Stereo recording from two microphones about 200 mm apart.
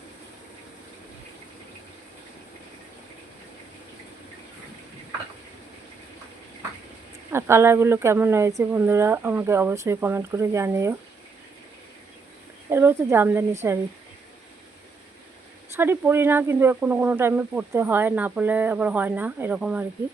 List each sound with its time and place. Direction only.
7.3 s speech: 10° right (ahead or behind)
12.7 s speech: 10° right (ahead or behind)
15.7 s speech: 10° right (ahead or behind)